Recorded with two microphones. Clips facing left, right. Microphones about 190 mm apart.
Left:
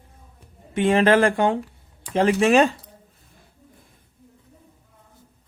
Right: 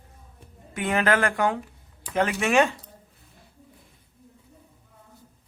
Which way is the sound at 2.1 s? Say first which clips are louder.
Left 5 dB; 30° left (ahead or behind).